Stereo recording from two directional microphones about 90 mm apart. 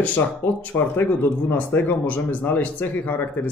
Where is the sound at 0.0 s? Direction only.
20° left (ahead or behind).